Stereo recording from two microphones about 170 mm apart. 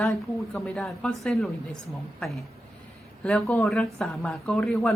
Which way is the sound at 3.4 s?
15° left (ahead or behind).